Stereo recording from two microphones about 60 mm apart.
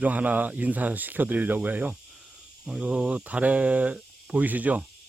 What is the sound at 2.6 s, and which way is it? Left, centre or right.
Speech, centre.